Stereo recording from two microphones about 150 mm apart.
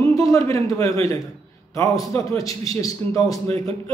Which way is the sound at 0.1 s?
20° left (ahead or behind).